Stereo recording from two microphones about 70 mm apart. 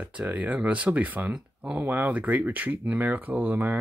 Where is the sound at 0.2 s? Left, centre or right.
Right.